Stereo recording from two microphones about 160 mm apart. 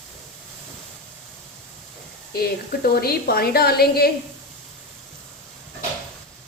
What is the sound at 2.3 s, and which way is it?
A woman's voice, 75° left (ahead or behind).